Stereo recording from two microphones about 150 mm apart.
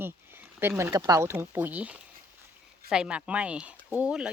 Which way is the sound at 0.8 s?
20° right (ahead or behind).